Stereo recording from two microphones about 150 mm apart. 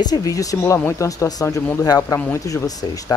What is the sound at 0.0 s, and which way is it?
Speech, 25° left (ahead or behind).